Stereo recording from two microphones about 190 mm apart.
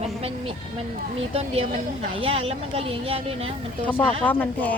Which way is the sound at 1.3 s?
30° right (ahead or behind).